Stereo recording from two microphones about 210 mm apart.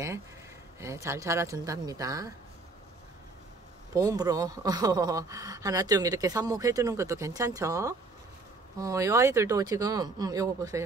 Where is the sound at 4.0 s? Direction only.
15° right (ahead or behind).